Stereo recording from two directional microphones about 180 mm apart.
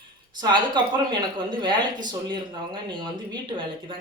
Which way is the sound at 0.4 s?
25° right (ahead or behind).